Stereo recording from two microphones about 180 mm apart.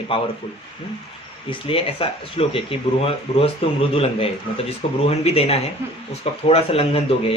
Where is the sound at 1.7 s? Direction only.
30° left (ahead or behind).